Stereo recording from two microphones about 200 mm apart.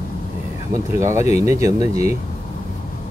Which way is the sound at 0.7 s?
15° right (ahead or behind).